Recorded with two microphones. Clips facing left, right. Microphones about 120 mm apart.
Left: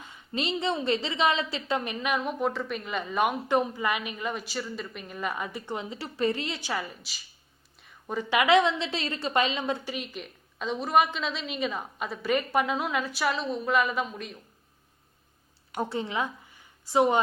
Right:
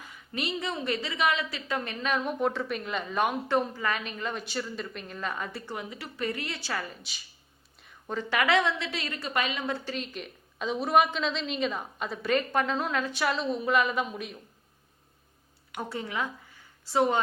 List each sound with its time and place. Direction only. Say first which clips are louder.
0.0 s a woman's voice: left 2 dB; 25° left (ahead or behind)
7.0 s a woman's voice: even; centre (ahead or behind)
10.1 s a woman's voice: even; centre (ahead or behind)
15.7 s a woman's voice: left 4 dB; 30° left (ahead or behind)